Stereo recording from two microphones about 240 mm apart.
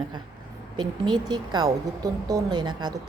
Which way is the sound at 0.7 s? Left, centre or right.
Centre.